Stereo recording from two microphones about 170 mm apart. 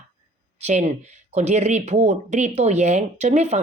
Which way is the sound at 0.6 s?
45° right (ahead or behind).